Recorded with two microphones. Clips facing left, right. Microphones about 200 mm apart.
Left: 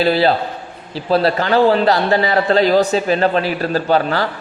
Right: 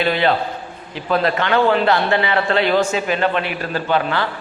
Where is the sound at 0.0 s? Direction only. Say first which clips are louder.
Left 3 dB; 35° left (ahead or behind).